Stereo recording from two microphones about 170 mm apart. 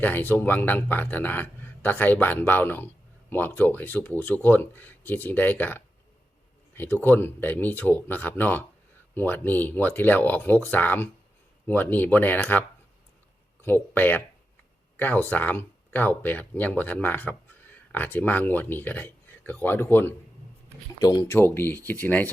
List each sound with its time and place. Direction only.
0.0 s speech: 10° left (ahead or behind)
21.0 s speech: 25° left (ahead or behind)